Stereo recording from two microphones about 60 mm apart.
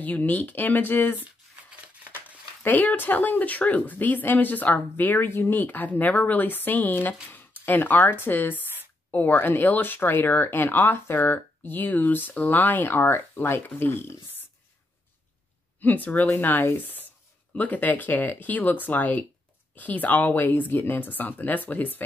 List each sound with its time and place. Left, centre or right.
0.0 s speech: left
1.7 s a sound: right
2.6 s speech: left
15.8 s speech: left